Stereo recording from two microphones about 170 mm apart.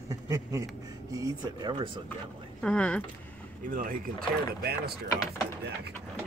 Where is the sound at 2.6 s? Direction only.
5° left (ahead or behind).